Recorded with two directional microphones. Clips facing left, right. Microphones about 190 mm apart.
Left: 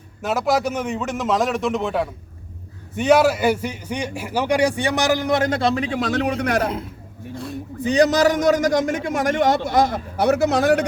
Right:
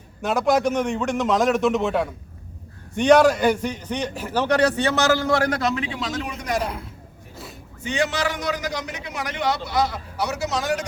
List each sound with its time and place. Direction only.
0.2 s a man's voice: centre (ahead or behind); by 6.0 s 40° left (ahead or behind)
6.0 s a man's voice: 65° left (ahead or behind)
7.3 s a sound: centre (ahead or behind)
7.9 s a man's voice: 40° left (ahead or behind); by 10.8 s 60° left (ahead or behind)